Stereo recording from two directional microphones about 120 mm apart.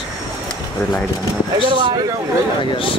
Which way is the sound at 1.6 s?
45° right (ahead or behind).